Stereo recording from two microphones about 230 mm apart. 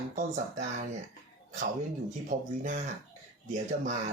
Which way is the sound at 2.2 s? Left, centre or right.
Right.